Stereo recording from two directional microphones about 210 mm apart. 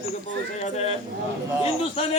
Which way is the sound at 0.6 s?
30° left (ahead or behind).